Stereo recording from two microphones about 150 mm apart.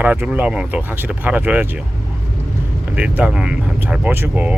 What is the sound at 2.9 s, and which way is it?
Speech, 10° right (ahead or behind).